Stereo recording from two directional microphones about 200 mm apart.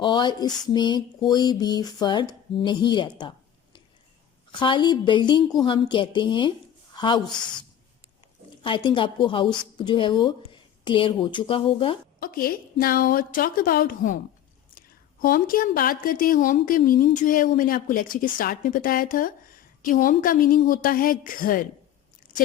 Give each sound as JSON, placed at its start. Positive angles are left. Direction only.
{"t": 0.0, "sound": "a woman's voice", "side_deg": 20}
{"t": 8.6, "sound": "a woman's voice", "side_deg": 25}
{"t": 12.2, "sound": "a woman's voice", "side_deg": 45}